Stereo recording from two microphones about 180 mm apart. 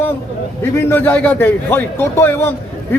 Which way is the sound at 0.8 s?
15° left (ahead or behind).